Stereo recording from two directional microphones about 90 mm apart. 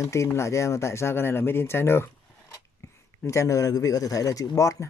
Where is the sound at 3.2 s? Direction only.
35° left (ahead or behind).